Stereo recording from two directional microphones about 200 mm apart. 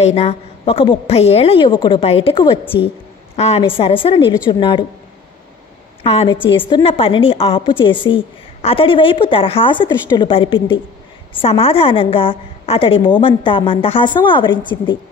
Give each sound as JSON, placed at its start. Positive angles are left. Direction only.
{"t": 0.0, "sound": "a woman's voice", "side_deg": 30}
{"t": 6.0, "sound": "a woman's voice", "side_deg": 30}